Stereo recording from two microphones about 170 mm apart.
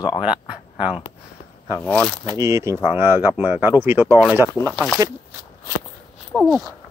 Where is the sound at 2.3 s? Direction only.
15° right (ahead or behind).